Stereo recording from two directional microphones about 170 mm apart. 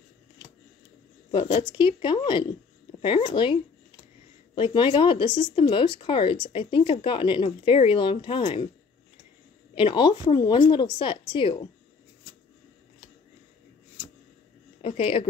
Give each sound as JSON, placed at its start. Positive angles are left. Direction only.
{"t": 1.3, "sound": "speech", "side_deg": 30}
{"t": 4.6, "sound": "speech", "side_deg": 30}
{"t": 9.8, "sound": "speech", "side_deg": 30}
{"t": 14.8, "sound": "speech", "side_deg": 35}